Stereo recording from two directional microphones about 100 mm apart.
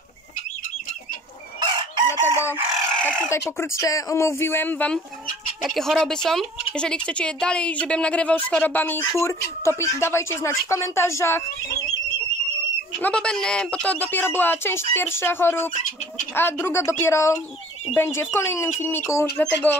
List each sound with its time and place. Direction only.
2.0 s fowl: 25° left (ahead or behind)
3.0 s speech: 10° left (ahead or behind)
3.3 s a woman's voice: 30° left (ahead or behind)
5.6 s a woman's voice: centre (ahead or behind); by 9.0 s 20° left (ahead or behind)
9.1 s a woman's voice: 30° left (ahead or behind)
13.0 s a woman's voice: 10° left (ahead or behind); by 19.2 s 25° left (ahead or behind)
19.3 s a woman's voice: 15° left (ahead or behind)